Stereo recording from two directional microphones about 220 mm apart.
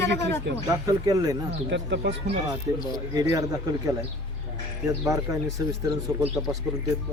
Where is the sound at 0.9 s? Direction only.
15° right (ahead or behind).